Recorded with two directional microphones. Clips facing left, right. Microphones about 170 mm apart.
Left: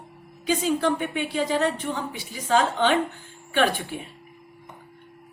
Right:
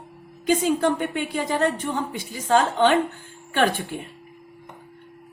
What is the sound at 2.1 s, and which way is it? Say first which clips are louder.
Speech: right 2 dB; 45° right (ahead or behind).